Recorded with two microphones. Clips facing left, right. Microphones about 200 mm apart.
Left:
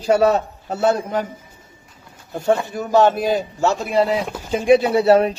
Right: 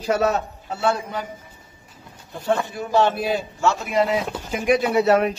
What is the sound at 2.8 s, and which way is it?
Speech, 40° left (ahead or behind).